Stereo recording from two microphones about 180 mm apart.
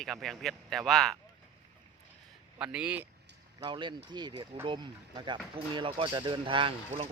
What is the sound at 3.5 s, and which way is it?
Speech, 25° right (ahead or behind).